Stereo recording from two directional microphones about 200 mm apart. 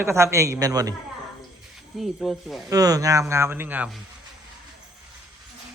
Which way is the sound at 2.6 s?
20° right (ahead or behind).